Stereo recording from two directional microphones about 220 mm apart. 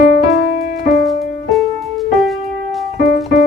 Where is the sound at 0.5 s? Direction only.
40° left (ahead or behind).